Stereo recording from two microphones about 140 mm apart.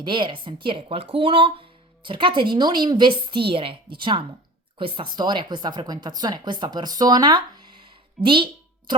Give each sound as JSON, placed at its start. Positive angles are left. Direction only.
{"t": 0.0, "sound": "speech", "side_deg": -35}